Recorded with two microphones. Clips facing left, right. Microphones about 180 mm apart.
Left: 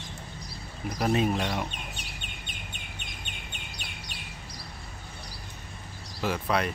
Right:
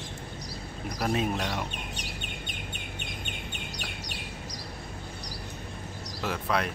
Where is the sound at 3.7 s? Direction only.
40° right (ahead or behind).